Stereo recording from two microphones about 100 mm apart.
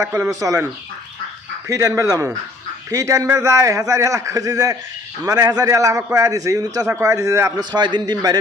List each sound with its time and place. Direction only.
0.1 s a man's voice: 35° right (ahead or behind)
7.6 s a man's voice: 45° right (ahead or behind)